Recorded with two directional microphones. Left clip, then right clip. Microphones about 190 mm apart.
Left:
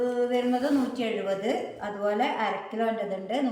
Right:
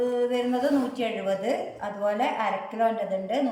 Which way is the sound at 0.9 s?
10° right (ahead or behind).